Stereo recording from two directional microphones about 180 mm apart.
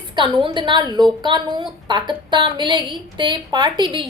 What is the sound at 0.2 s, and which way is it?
A woman's voice, 25° right (ahead or behind).